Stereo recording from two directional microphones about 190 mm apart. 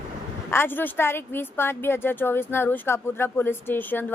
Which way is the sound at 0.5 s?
10° left (ahead or behind).